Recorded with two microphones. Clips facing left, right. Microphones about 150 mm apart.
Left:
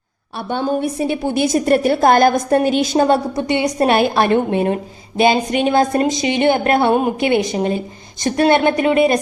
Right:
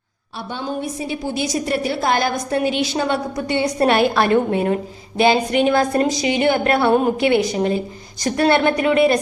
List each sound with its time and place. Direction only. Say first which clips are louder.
0.3 s a woman's voice: left 6 dB; 60° left (ahead or behind)
3.3 s a woman's voice: left 2 dB; 20° left (ahead or behind)